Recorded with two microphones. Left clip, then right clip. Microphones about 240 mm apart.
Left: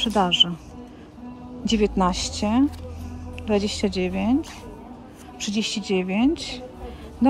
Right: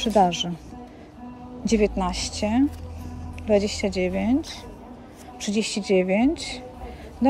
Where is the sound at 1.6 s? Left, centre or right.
Left.